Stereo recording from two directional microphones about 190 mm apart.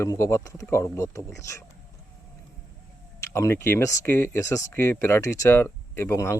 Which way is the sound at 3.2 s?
15° left (ahead or behind).